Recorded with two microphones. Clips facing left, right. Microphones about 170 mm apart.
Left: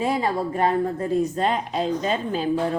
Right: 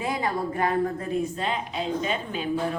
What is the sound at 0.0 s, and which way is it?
A woman's voice, 30° left (ahead or behind).